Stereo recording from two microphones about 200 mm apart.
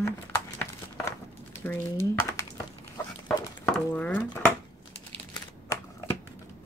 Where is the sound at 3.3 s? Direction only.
5° left (ahead or behind).